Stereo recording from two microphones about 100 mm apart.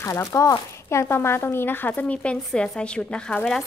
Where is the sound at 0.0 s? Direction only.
30° left (ahead or behind).